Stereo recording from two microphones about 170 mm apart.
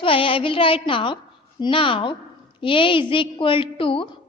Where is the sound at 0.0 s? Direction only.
30° left (ahead or behind).